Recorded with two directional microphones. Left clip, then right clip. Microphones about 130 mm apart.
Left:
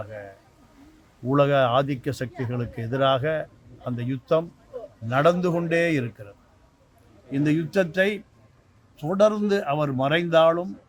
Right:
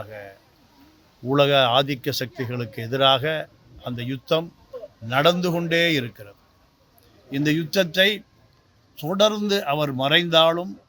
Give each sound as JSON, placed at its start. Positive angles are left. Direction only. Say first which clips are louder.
{"t": 0.0, "sound": "speech", "louder": "even", "side_deg": -25}
{"t": 7.3, "sound": "speech", "louder": "right 1 dB", "side_deg": -15}